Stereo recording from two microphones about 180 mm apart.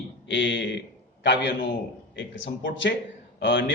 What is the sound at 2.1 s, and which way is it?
Speech, 90° left.